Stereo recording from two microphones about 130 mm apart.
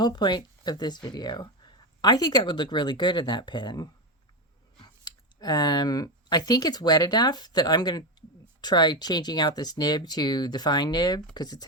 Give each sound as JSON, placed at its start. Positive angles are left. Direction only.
{"t": 0.0, "sound": "speech", "side_deg": 35}